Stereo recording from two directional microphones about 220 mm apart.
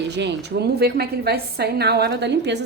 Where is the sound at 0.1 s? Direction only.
50° right (ahead or behind).